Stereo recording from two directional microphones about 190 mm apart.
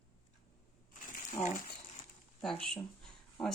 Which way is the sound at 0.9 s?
45° left (ahead or behind).